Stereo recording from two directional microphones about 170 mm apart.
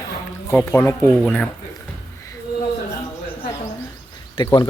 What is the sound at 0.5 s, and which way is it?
Speech, 10° left (ahead or behind).